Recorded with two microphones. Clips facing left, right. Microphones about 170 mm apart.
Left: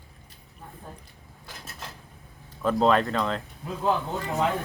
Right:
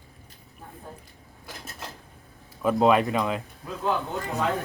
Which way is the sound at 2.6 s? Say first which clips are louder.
Right 1 dB; 10° right (ahead or behind).